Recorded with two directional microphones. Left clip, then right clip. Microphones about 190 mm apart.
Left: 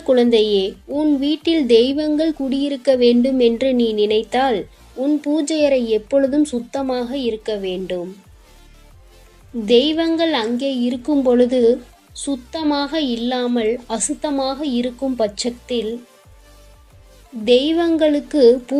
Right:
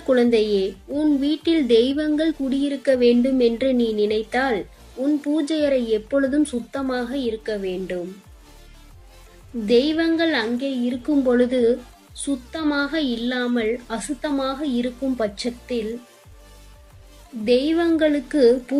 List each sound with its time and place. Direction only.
0.1 s a woman's voice: 20° left (ahead or behind)
9.6 s a woman's voice: 20° left (ahead or behind)
17.4 s a woman's voice: 20° left (ahead or behind)